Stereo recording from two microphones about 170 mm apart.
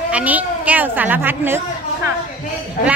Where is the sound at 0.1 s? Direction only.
10° right (ahead or behind).